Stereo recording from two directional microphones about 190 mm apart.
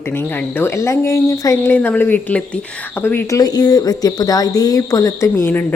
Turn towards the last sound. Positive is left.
turn(degrees=10)  # may be behind; listen again after turning